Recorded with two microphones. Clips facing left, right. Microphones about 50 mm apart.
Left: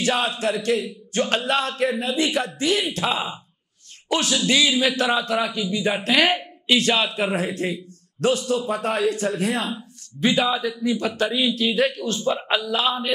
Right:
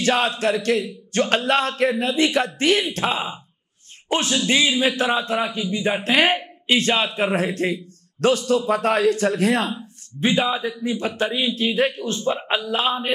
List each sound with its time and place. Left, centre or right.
0.0 s a man's voice: right
9.8 s a man's voice: right